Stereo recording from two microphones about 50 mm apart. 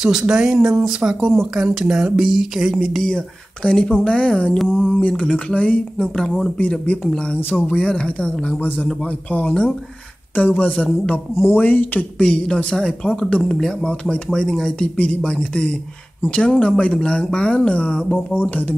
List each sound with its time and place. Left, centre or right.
0.0 s speech: centre
3.2 s speech: centre
4.6 s speech: centre
4.9 s speech: left
7.3 s speech: left
7.6 s speech: centre
8.5 s speech: left
11.4 s speech: left
12.2 s speech: left